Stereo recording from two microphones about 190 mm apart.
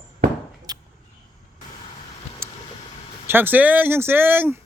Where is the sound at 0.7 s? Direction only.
20° right (ahead or behind).